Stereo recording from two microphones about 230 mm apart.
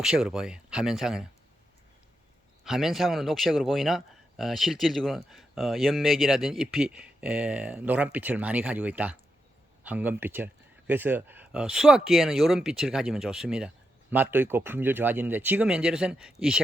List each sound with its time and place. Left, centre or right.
0.0 s speech: centre
2.6 s speech: centre